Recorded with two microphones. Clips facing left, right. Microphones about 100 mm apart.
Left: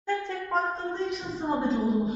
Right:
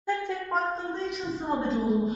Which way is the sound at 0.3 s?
Centre (ahead or behind).